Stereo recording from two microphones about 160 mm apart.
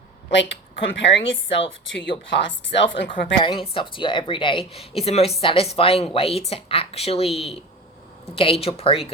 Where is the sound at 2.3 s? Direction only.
90° left.